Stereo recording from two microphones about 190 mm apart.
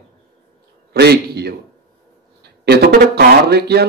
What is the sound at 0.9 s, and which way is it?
Speech, 60° right (ahead or behind).